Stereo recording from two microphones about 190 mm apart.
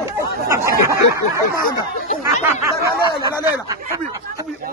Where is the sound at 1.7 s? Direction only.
40° left (ahead or behind).